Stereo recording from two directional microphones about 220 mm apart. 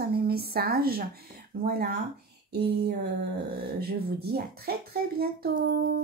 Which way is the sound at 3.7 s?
45° right (ahead or behind).